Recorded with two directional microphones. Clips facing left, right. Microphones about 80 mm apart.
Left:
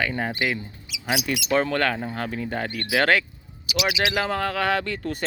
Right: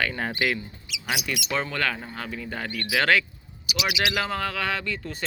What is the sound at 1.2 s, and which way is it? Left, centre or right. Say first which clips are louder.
Speech: left 5 dB; left.